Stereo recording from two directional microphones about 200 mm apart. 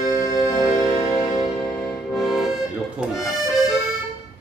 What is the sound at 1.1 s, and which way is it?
Music, 15° left (ahead or behind).